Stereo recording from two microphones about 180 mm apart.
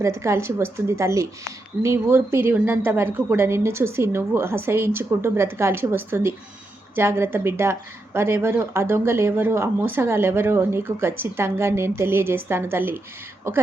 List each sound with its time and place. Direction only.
0.0 s speech: 15° right (ahead or behind)